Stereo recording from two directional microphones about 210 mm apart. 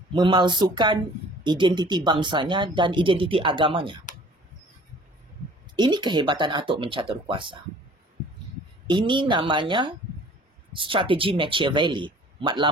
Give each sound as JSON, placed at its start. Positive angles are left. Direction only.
{"t": 0.1, "sound": "speech", "side_deg": -20}
{"t": 5.8, "sound": "speech", "side_deg": -20}
{"t": 8.8, "sound": "speech", "side_deg": -20}